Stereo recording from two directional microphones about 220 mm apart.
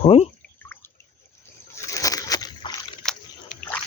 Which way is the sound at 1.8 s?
15° left (ahead or behind).